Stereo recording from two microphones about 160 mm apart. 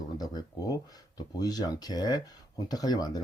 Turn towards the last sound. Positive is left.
turn(degrees=25)  # may be behind; listen again after turning